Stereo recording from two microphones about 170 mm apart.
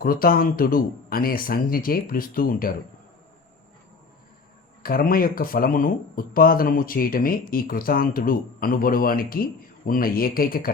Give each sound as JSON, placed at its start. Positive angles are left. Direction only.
{"t": 0.0, "sound": "speech", "side_deg": 60}
{"t": 4.8, "sound": "speech", "side_deg": 60}